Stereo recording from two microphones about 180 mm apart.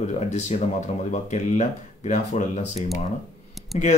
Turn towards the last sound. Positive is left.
turn(degrees=40)  # may be behind; listen again after turning